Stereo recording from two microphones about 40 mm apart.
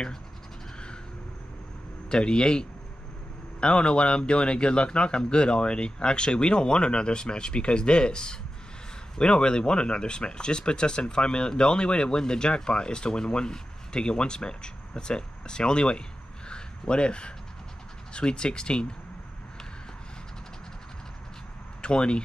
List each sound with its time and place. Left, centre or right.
2.0 s speech: left
16.4 s a sound: left
18.1 s speech: left
21.8 s speech: left